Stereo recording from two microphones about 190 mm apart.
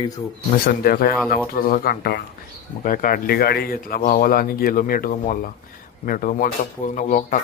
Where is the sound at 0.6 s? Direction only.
55° left (ahead or behind).